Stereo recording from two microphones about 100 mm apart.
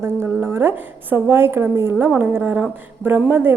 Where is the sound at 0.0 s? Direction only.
25° right (ahead or behind).